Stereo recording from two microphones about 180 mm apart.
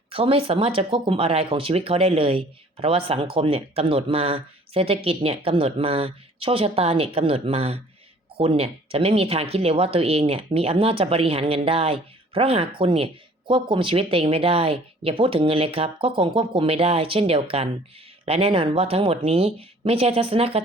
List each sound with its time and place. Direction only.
0.1 s speech: 30° right (ahead or behind)